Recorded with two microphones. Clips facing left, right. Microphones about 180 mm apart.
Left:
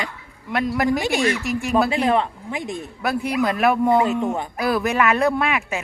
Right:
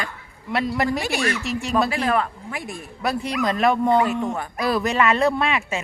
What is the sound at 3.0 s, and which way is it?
Speech, centre (ahead or behind).